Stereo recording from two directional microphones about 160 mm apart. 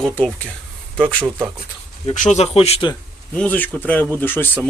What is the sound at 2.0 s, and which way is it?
Speech, 50° left (ahead or behind).